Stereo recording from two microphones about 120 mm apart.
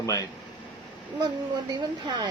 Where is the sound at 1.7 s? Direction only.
35° right (ahead or behind).